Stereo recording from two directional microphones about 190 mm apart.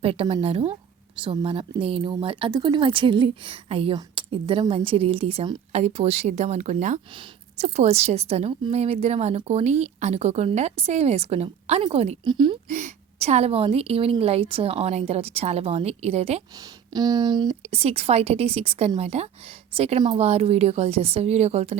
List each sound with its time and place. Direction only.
0.0 s a woman's voice: 30° right (ahead or behind)
12.2 s speech: 25° right (ahead or behind)
12.7 s a woman's voice: 35° right (ahead or behind)
16.9 s a woman's voice: 20° right (ahead or behind)